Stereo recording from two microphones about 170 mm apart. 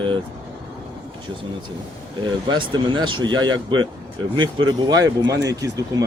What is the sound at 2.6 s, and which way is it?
Speech, 25° right (ahead or behind).